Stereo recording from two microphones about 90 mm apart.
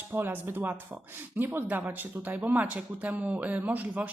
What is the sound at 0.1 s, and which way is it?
Speech, 25° right (ahead or behind).